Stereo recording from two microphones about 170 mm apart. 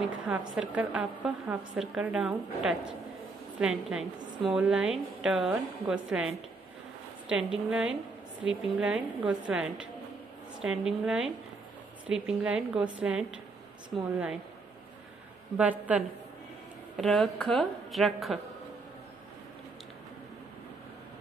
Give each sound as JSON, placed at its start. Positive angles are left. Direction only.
{"t": 0.3, "sound": "a woman's voice", "side_deg": -5}
{"t": 15.5, "sound": "a woman's voice", "side_deg": -10}